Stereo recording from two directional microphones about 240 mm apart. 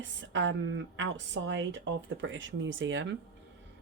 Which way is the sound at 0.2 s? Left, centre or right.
Right.